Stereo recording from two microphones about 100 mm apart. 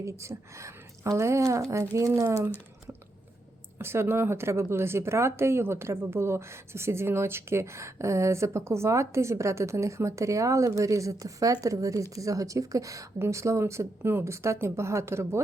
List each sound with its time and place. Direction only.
0.0 s speech: 30° right (ahead or behind)
3.8 s speech: 25° right (ahead or behind)